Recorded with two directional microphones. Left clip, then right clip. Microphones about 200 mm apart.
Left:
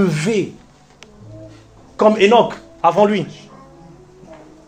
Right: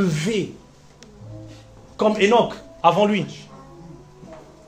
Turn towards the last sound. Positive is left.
turn(degrees=25)  # may be behind; listen again after turning